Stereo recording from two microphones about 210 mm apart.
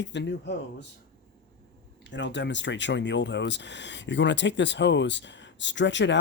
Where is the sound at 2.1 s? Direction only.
55° left (ahead or behind).